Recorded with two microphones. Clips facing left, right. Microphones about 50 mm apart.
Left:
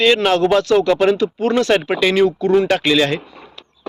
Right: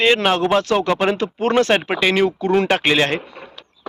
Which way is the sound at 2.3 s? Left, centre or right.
Right.